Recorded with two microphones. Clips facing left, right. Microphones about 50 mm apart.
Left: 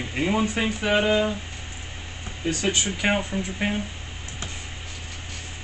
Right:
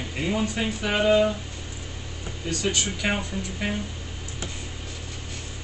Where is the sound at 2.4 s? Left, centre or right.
Left.